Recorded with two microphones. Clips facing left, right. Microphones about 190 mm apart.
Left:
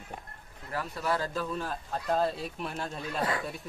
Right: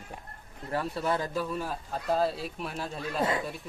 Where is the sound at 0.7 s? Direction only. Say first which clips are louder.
Right 2 dB; 30° right (ahead or behind); by 3.2 s centre (ahead or behind).